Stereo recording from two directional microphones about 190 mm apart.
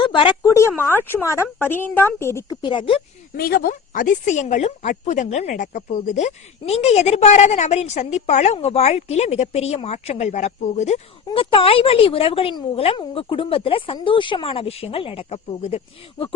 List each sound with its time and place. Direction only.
0.0 s a woman's voice: 25° left (ahead or behind)
3.3 s a woman's voice: 50° left (ahead or behind); by 16.3 s 30° left (ahead or behind)